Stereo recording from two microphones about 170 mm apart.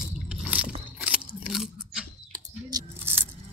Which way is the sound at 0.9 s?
10° right (ahead or behind).